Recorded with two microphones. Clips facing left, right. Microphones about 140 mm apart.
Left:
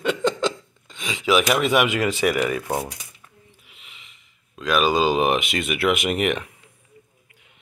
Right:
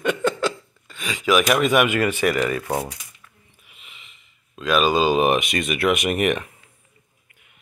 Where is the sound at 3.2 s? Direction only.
25° left (ahead or behind).